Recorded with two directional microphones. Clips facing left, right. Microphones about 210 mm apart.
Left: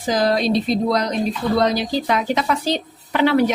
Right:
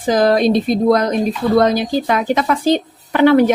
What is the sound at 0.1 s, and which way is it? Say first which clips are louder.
Speech: right 5 dB; 55° right (ahead or behind).